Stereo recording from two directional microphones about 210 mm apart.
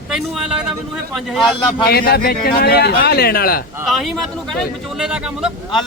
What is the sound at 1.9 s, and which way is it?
A man's voice, 45° left (ahead or behind).